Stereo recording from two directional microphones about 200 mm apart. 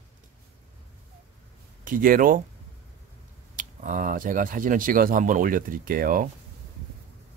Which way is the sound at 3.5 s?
40° right (ahead or behind).